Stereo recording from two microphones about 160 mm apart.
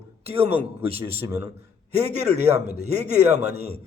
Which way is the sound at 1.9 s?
45° right (ahead or behind).